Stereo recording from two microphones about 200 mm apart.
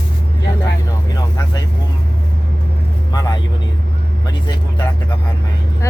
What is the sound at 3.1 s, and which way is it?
Speech, 20° left (ahead or behind).